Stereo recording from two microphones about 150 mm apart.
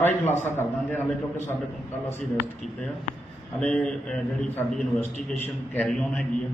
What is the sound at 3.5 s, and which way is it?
A man's voice, 5° left (ahead or behind).